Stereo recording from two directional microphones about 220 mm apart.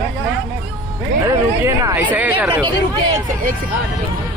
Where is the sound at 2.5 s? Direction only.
20° right (ahead or behind).